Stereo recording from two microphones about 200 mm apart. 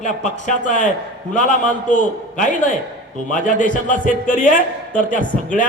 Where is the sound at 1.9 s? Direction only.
40° left (ahead or behind).